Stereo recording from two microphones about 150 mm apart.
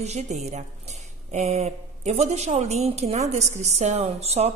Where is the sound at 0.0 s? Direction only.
50° right (ahead or behind).